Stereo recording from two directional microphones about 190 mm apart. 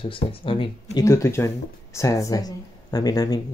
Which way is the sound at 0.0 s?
30° left (ahead or behind).